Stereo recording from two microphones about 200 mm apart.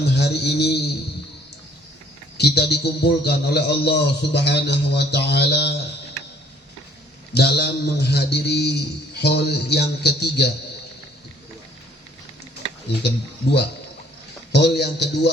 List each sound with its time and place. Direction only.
0.0 s mantra: 55° left (ahead or behind)
2.4 s a man's voice: 55° left (ahead or behind)
7.3 s a man's voice: 55° left (ahead or behind)
12.9 s a man's voice: 55° left (ahead or behind)